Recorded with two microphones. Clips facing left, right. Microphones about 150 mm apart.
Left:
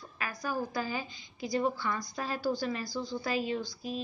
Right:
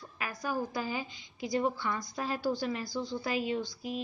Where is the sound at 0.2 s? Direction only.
5° right (ahead or behind).